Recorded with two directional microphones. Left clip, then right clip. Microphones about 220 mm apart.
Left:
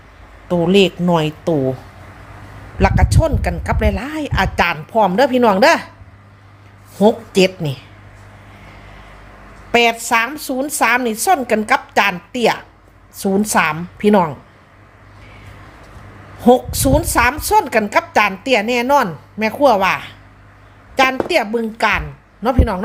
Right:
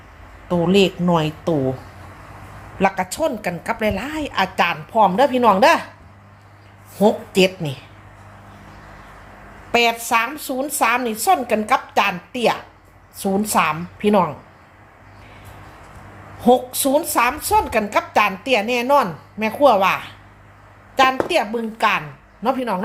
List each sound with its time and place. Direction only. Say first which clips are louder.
0.4 s speech: left 3 dB; 30° left (ahead or behind)
2.7 s a woman's voice: left 2 dB; 20° left (ahead or behind)
7.0 s a woman's voice: left 3 dB; 20° left (ahead or behind)
9.7 s a woman's voice: left 3 dB; 20° left (ahead or behind)
16.4 s a woman's voice: left 3 dB; 25° left (ahead or behind)